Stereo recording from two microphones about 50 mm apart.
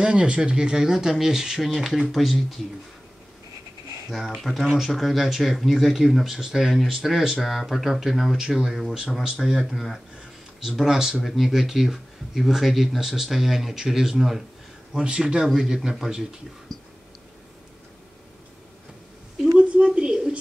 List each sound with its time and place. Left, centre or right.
0.0 s speech: centre
4.1 s speech: centre
9.7 s speech: centre
15.0 s speech: centre
15.4 s speech: centre
19.6 s a sound: right